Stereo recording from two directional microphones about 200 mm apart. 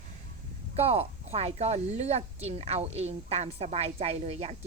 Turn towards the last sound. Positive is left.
turn(degrees=-30)  # may be behind; listen again after turning